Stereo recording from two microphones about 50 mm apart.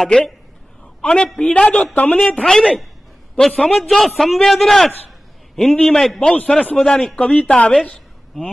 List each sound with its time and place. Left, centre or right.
0.0 s a man's voice: centre
1.5 s a man's voice: left; by 6.3 s centre
6.3 s a man's voice: left
6.8 s a man's voice: centre
7.3 s a man's voice: left